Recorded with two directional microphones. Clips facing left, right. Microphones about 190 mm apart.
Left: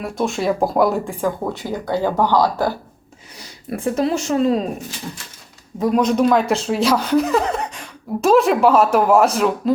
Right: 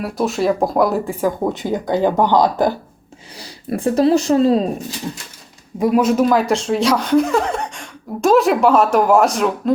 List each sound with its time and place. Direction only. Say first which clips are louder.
0.0 s speech: right 2 dB; centre (ahead or behind)
1.5 s speech: right 4 dB; 20° right (ahead or behind)
3.3 s speech: right 4 dB; 30° right (ahead or behind)
5.8 s speech: right 2 dB; 5° right (ahead or behind)